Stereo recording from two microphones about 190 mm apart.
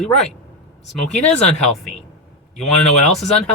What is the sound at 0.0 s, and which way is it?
Speech, 5° left (ahead or behind).